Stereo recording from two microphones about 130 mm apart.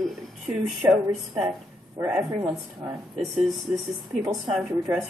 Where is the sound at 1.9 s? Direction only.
15° right (ahead or behind).